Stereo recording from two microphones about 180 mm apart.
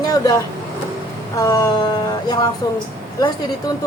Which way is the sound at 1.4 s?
20° left (ahead or behind).